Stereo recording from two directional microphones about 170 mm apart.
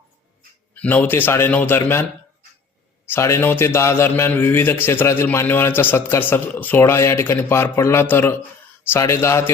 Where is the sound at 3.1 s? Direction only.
15° left (ahead or behind).